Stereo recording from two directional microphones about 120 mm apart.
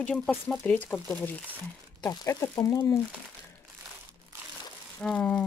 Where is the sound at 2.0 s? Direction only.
25° left (ahead or behind).